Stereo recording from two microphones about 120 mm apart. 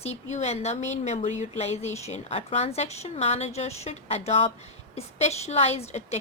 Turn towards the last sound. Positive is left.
turn(degrees=65)  # may be behind; listen again after turning